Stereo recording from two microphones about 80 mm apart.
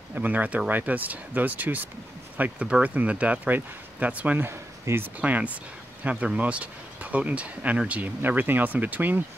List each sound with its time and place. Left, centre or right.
0.1 s speech: centre
4.5 s speech: right
5.2 s speech: centre